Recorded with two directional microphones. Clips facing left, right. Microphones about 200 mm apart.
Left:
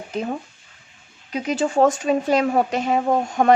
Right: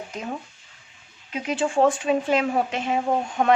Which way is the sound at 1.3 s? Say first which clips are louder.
Left 3 dB; 40° left (ahead or behind).